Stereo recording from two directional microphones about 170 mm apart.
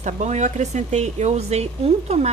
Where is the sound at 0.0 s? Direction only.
45° right (ahead or behind).